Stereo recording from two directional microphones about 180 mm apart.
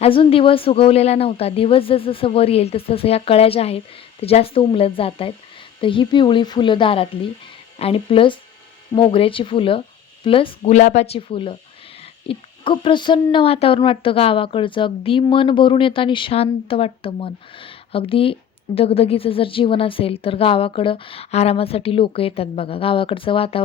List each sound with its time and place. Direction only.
0.0 s speech: 30° left (ahead or behind)